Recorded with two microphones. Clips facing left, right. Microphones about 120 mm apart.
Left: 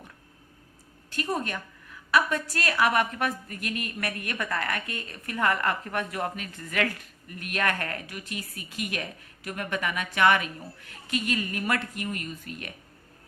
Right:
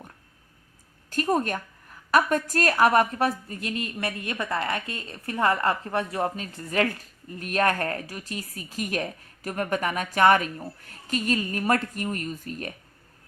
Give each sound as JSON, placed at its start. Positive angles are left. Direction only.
{"t": 1.1, "sound": "a woman's voice", "side_deg": -40}